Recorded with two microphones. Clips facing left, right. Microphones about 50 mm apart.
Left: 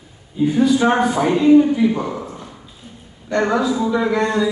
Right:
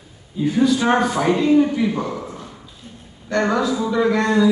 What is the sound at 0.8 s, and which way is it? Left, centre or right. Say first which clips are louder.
Speech: left 2 dB; left.